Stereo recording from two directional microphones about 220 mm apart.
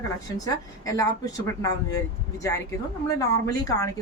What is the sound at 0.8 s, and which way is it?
A woman's voice, 15° left (ahead or behind).